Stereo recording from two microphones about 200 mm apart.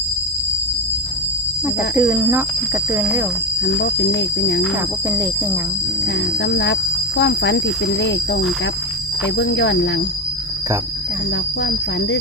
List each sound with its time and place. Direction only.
2.0 s speech: 10° right (ahead or behind)
3.6 s speech: 60° left (ahead or behind)
6.4 s speech: 60° left (ahead or behind)
9.4 s speech: 60° left (ahead or behind)